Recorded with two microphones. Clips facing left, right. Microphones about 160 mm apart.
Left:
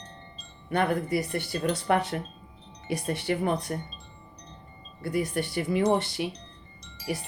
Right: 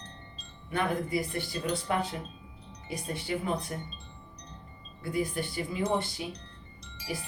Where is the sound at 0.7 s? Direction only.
65° left (ahead or behind).